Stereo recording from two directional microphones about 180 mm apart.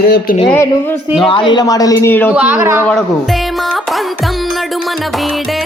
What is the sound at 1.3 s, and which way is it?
A man's voice, 25° left (ahead or behind).